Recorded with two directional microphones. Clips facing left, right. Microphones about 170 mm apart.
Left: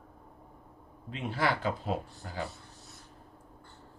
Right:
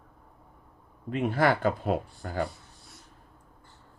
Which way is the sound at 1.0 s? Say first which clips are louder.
Right 7 dB; 55° right (ahead or behind).